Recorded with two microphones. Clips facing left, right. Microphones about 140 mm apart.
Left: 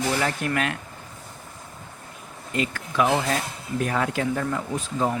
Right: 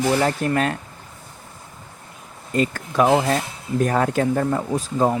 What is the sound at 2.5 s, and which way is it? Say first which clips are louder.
Speech: right 5 dB; 40° right (ahead or behind).